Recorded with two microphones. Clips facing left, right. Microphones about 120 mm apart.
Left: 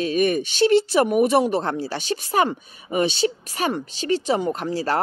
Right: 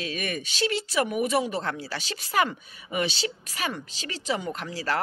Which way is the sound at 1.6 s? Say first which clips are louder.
Left 7 dB; 30° left (ahead or behind).